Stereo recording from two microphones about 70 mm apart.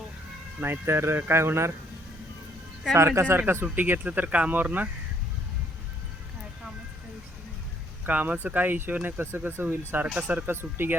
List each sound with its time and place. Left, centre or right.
0.6 s speech: right
3.1 s speech: right
8.0 s speech: right